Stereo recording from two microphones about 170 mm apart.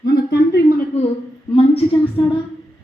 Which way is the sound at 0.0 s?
75° left (ahead or behind).